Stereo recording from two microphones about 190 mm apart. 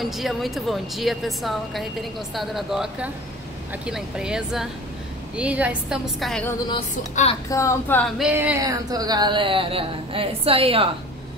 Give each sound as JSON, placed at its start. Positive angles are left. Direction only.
{"t": 0.0, "sound": "a woman's voice", "side_deg": 0}
{"t": 7.0, "sound": "speech", "side_deg": 40}
{"t": 7.4, "sound": "a woman's voice", "side_deg": 15}
{"t": 8.2, "sound": "speech", "side_deg": -10}